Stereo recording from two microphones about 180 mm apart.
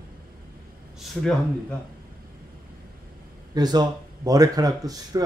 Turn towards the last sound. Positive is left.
turn(degrees=-20)  # may be behind; listen again after turning